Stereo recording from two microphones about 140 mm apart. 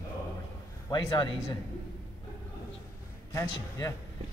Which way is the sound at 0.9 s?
35° left (ahead or behind).